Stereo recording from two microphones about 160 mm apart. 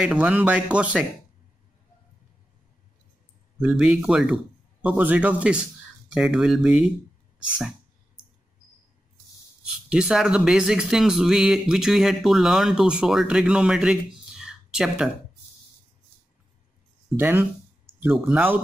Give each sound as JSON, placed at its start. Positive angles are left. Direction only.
{"t": 0.0, "sound": "speech", "side_deg": -5}
{"t": 3.6, "sound": "speech", "side_deg": -5}
{"t": 9.8, "sound": "speech", "side_deg": -5}
{"t": 17.2, "sound": "speech", "side_deg": -15}